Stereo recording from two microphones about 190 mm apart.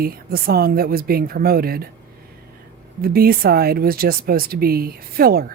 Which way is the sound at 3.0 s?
50° right (ahead or behind).